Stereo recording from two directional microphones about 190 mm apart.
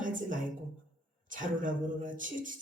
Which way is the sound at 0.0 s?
45° right (ahead or behind).